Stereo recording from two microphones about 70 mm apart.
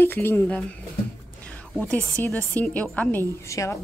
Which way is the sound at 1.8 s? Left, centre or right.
Centre.